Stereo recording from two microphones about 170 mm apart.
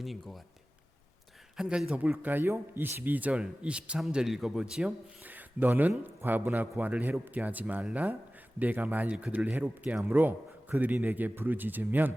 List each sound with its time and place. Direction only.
0.0 s speech: centre (ahead or behind)
1.5 s a man's voice: 5° right (ahead or behind)